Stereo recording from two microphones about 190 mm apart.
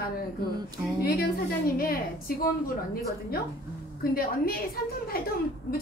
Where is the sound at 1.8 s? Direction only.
50° left (ahead or behind).